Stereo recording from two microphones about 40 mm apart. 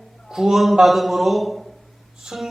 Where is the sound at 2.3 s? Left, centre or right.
Centre.